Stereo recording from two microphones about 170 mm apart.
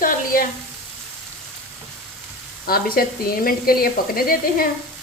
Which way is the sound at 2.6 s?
60° left (ahead or behind).